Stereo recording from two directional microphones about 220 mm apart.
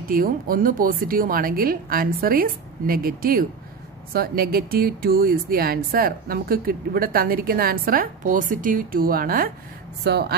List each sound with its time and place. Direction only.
0.1 s a woman's voice: 40° right (ahead or behind)